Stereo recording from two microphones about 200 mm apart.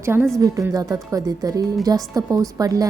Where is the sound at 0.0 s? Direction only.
10° right (ahead or behind).